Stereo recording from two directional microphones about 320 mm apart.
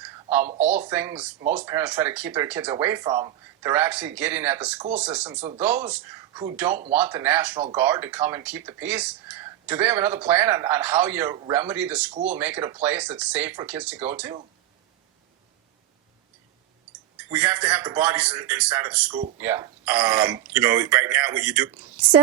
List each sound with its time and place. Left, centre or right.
0.9 s speech: centre
5.3 s speech: centre
5.6 s speech: centre
12.1 s speech: right
12.4 s speech: centre
17.3 s speech: centre